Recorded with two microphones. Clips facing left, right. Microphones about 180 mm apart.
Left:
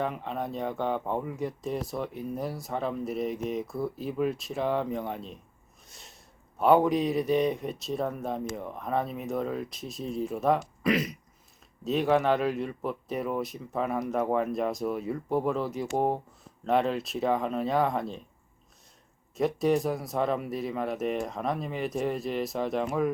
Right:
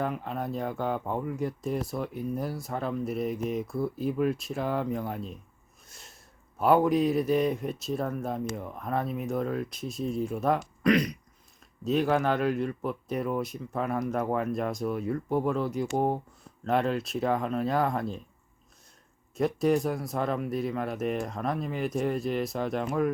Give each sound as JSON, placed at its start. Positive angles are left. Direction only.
{"t": 0.0, "sound": "speech", "side_deg": 0}
{"t": 5.9, "sound": "a sound", "side_deg": 0}
{"t": 6.6, "sound": "speech", "side_deg": 0}
{"t": 19.3, "sound": "speech", "side_deg": 0}